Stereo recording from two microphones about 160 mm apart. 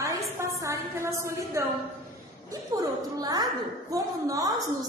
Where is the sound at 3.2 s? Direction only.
25° right (ahead or behind).